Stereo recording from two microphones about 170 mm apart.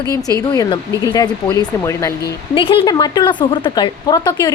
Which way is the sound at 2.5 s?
30° left (ahead or behind).